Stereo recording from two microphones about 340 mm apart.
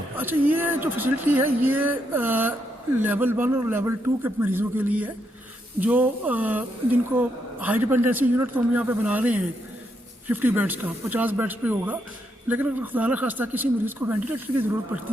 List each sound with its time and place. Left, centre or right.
0.2 s speech: centre